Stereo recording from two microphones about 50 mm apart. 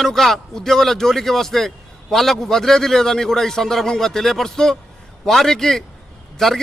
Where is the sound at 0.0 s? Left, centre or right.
Centre.